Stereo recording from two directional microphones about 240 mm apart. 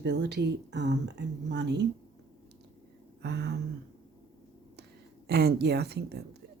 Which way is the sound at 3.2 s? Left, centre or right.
Right.